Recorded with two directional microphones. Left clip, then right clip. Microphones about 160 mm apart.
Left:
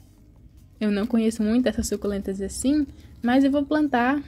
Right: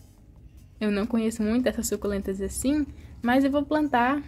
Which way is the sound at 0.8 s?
15° left (ahead or behind).